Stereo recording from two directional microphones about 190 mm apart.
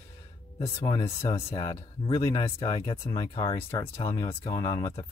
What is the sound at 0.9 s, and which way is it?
Speech, 15° left (ahead or behind).